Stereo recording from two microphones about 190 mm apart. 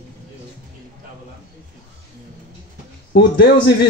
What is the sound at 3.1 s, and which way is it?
Speech, 55° left (ahead or behind).